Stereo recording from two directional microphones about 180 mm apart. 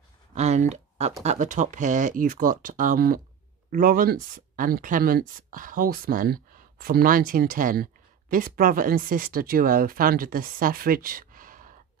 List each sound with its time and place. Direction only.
0.3 s speech: 40° right (ahead or behind)